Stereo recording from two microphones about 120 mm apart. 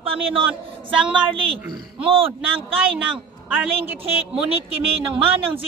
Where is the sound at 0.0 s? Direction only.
50° right (ahead or behind).